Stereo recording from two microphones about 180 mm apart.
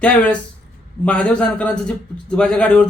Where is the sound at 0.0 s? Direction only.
5° left (ahead or behind).